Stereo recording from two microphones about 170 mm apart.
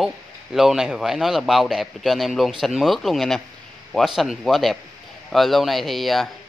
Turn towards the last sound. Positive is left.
turn(degrees=0)  # may be behind; listen again after turning